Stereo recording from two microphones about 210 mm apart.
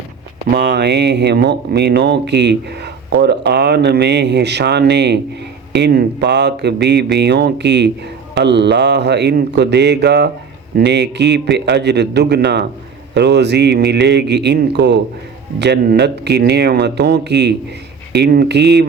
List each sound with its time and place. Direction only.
0.5 s speech: 55° right (ahead or behind)